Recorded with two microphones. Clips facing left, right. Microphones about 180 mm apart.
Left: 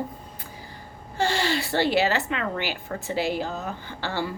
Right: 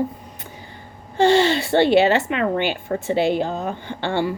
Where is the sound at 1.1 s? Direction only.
25° right (ahead or behind).